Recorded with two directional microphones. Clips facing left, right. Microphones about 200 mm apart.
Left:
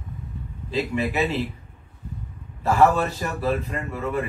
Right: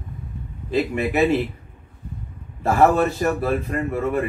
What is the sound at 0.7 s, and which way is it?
Speech, 55° right (ahead or behind).